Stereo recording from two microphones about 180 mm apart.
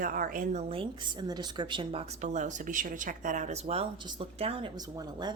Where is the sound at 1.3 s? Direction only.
25° right (ahead or behind).